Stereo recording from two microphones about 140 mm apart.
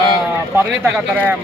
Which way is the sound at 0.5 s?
10° right (ahead or behind).